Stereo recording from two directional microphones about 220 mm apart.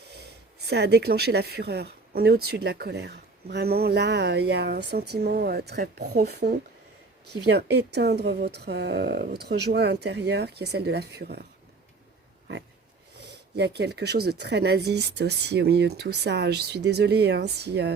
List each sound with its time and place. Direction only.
0.1 s speech: 50° right (ahead or behind)
7.9 s speech: 50° right (ahead or behind)
13.6 s speech: 50° right (ahead or behind)